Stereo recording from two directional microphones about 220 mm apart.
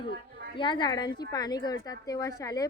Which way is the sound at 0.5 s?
20° left (ahead or behind).